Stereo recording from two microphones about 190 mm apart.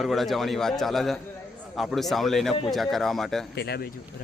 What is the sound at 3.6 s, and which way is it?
Speech, 60° left (ahead or behind).